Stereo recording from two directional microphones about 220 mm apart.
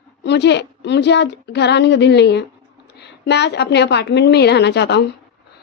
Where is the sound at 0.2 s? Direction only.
50° left (ahead or behind).